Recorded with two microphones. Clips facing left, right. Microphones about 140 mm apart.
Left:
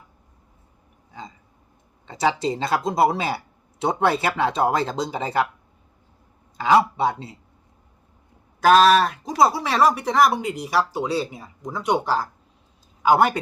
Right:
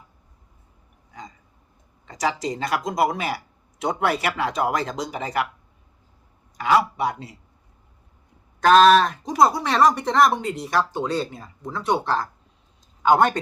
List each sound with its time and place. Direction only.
2.0 s speech: 25° left (ahead or behind)
6.6 s speech: 25° left (ahead or behind)
8.6 s speech: 5° left (ahead or behind)